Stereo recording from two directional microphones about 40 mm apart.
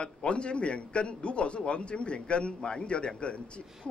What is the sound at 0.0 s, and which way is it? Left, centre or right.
A man's voice, left.